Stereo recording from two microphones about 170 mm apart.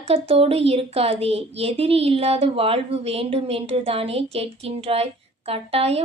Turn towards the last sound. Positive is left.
turn(degrees=-35)  # may be behind; listen again after turning